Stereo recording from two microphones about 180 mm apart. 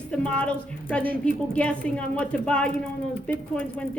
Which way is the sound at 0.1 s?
5° left (ahead or behind).